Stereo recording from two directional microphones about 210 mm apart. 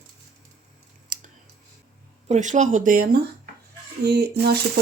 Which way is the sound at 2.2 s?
35° right (ahead or behind).